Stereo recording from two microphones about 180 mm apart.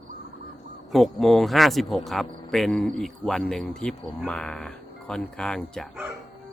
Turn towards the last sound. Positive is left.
turn(degrees=5)  # may be behind; listen again after turning